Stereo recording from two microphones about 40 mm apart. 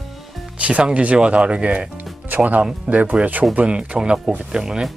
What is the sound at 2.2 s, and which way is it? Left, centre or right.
Speech, right.